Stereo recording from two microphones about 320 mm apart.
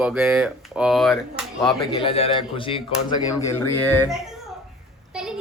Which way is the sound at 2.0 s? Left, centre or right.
Centre.